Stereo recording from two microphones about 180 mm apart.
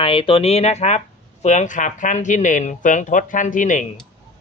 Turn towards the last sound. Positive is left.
turn(degrees=45)  # may be behind; listen again after turning